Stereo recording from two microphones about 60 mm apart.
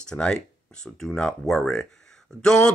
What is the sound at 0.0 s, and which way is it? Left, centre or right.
Speech, centre.